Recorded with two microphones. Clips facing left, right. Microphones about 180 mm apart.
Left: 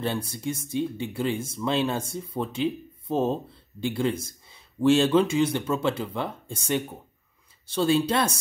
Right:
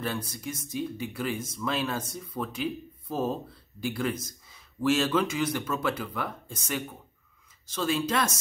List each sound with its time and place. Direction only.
0.0 s speech: 30° left (ahead or behind)